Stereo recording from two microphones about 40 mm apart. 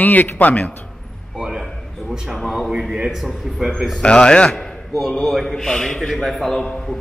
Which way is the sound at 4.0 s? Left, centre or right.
Left.